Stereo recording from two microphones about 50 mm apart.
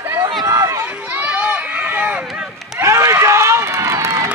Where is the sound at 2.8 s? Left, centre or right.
Right.